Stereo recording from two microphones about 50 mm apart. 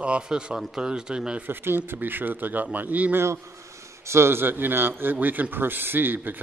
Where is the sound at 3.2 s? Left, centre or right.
Right.